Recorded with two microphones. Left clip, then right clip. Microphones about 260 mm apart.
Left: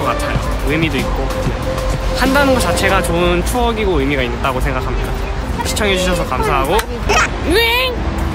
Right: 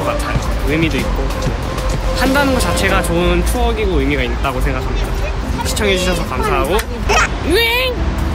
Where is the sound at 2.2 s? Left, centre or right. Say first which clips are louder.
Left 2 dB; centre.